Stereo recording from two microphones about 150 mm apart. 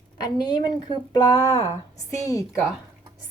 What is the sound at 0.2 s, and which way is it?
A woman's voice, 30° left (ahead or behind).